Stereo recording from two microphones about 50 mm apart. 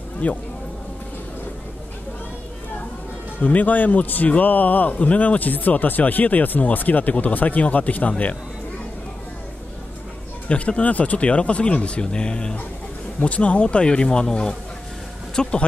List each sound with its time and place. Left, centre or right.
0.2 s speech: left
3.3 s speech: left
10.5 s speech: left